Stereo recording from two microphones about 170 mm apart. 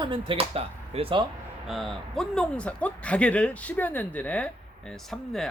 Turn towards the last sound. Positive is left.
turn(degrees=0)  # may be behind; listen again after turning